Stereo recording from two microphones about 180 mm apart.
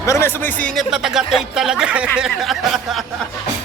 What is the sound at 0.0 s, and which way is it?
Speech, 15° left (ahead or behind).